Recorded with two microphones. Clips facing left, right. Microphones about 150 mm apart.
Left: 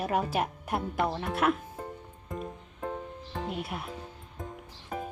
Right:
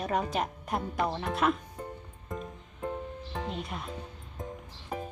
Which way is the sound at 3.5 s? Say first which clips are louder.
Left 2 dB; 5° left (ahead or behind).